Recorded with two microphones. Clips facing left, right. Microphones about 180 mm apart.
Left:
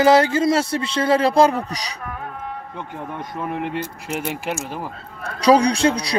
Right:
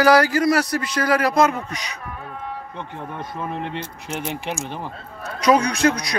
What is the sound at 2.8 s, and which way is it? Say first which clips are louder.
Speech: left 3 dB; 15° left (ahead or behind).